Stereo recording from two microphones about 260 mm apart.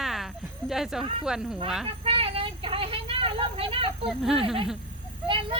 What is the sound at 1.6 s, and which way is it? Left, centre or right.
Speech, centre.